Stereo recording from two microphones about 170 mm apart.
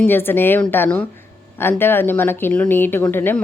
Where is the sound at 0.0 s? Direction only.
10° left (ahead or behind).